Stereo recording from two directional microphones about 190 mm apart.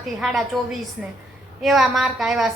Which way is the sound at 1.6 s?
Centre (ahead or behind).